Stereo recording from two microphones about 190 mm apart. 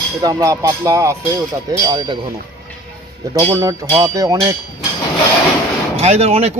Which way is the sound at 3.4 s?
15° right (ahead or behind).